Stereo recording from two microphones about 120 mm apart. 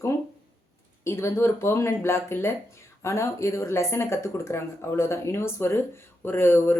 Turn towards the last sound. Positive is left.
turn(degrees=20)  # may be behind; listen again after turning